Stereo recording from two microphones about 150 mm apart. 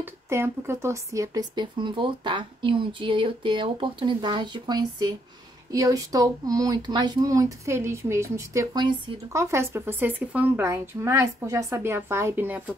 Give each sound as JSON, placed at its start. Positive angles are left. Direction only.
{"t": 0.0, "sound": "speech", "side_deg": -15}